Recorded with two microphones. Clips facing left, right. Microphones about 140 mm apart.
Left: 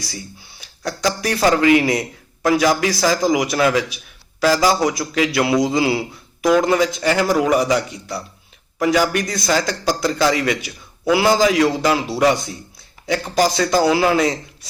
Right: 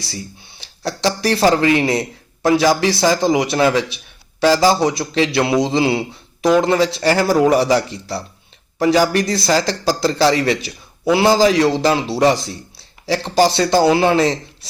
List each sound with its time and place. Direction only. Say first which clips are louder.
0.6 s a man's voice: right 2 dB; 30° right (ahead or behind)